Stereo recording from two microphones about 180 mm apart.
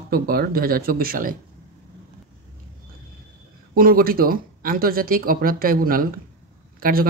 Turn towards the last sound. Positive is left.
turn(degrees=-55)  # may be behind; listen again after turning